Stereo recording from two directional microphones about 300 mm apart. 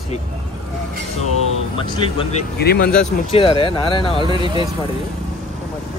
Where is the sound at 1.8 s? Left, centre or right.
Centre.